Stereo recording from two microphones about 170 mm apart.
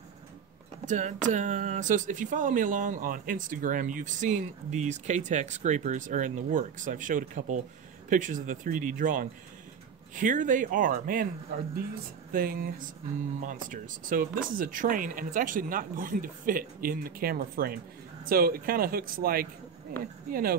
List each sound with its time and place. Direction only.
0.8 s speech: 45° right (ahead or behind)